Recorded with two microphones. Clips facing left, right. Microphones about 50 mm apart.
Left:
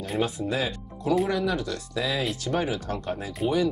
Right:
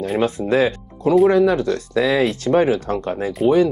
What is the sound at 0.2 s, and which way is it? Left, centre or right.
Speech, right.